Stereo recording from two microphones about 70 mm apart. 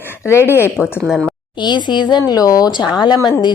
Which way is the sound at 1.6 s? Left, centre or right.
Left.